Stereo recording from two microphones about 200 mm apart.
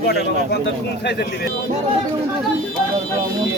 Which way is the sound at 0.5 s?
55° left (ahead or behind).